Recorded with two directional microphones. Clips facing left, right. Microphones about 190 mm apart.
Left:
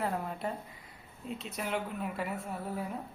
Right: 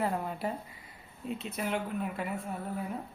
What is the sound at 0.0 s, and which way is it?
Speech, centre (ahead or behind).